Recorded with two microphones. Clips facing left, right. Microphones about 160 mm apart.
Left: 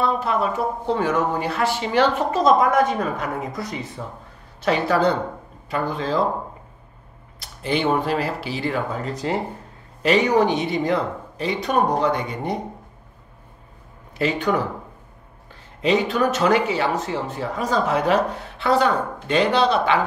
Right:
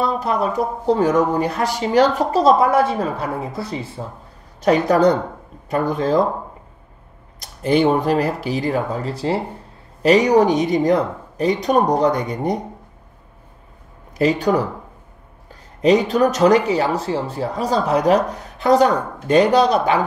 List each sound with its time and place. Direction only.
0.0 s speech: 40° right (ahead or behind)
4.6 s speech: 40° right (ahead or behind)
7.3 s speech: 40° right (ahead or behind)
14.1 s speech: 40° right (ahead or behind)
15.8 s speech: 40° right (ahead or behind)